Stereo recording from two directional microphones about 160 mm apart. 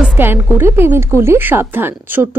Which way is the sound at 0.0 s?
10° right (ahead or behind).